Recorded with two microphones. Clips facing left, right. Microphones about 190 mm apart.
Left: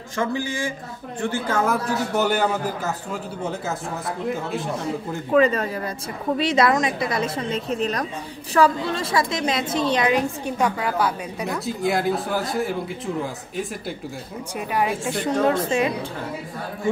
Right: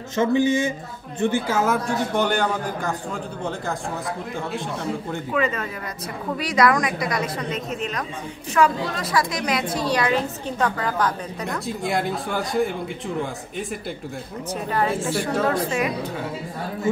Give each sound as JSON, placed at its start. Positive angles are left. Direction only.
{"t": 0.1, "sound": "a woman's voice", "side_deg": -20}
{"t": 1.6, "sound": "a woman's voice", "side_deg": 5}
{"t": 5.3, "sound": "a woman's voice", "side_deg": 35}
{"t": 14.7, "sound": "a woman's voice", "side_deg": 15}